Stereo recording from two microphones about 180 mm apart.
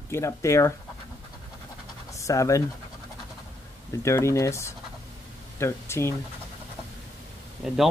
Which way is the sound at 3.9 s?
15° left (ahead or behind).